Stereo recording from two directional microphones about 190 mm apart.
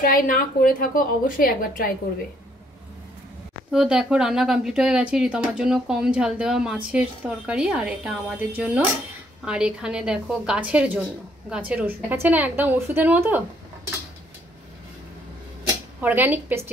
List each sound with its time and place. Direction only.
0.0 s a woman's voice: 45° left (ahead or behind)
3.7 s a woman's voice: 5° right (ahead or behind)
16.0 s a woman's voice: 10° right (ahead or behind)